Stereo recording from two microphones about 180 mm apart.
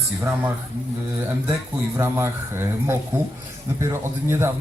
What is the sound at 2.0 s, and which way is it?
A man's voice, 15° right (ahead or behind).